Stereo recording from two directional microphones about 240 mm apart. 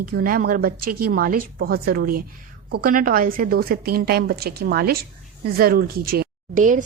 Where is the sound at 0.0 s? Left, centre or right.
Right.